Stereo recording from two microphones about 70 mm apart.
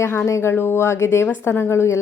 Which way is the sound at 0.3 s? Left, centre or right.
Left.